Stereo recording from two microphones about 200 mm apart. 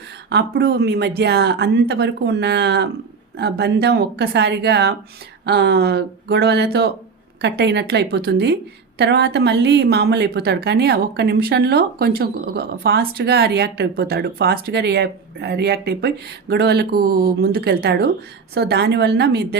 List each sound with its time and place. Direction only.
0.3 s a woman's voice: 60° right (ahead or behind)